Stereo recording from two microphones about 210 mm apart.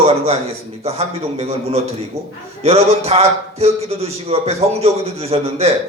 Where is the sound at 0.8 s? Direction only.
30° right (ahead or behind).